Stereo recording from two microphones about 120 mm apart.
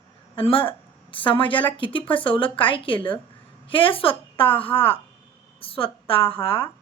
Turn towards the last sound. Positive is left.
turn(degrees=50)  # may be behind; listen again after turning